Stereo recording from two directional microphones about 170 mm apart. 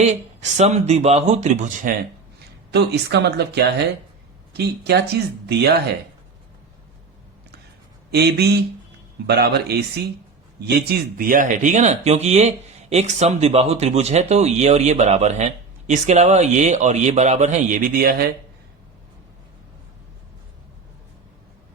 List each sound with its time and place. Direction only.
0.0 s speech: 40° right (ahead or behind)
2.7 s speech: 80° right
8.1 s a man's voice: 70° right (ahead or behind)